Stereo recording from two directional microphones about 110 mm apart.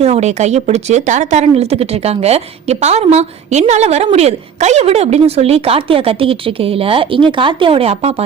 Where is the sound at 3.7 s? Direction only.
75° right (ahead or behind).